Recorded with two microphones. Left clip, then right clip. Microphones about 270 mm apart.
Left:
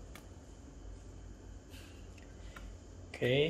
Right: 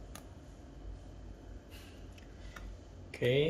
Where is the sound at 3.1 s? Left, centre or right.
Centre.